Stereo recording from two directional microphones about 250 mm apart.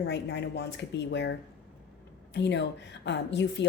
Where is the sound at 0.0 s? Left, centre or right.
Left.